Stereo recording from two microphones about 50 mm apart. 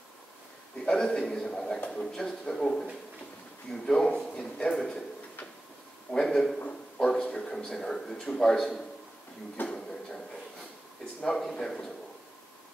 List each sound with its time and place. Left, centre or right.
0.8 s a man's voice: centre
6.1 s a man's voice: centre
9.7 s a sound: centre
11.2 s speech: centre